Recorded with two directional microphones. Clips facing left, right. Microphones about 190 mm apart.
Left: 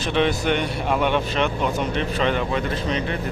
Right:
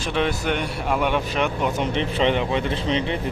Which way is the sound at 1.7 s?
20° right (ahead or behind).